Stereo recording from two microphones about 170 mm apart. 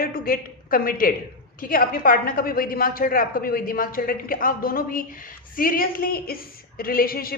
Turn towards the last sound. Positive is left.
turn(degrees=60)  # may be behind; listen again after turning